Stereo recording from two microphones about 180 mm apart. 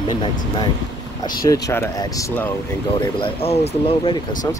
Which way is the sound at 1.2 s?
15° left (ahead or behind).